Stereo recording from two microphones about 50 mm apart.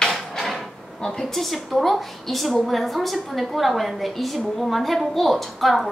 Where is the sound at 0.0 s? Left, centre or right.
Centre.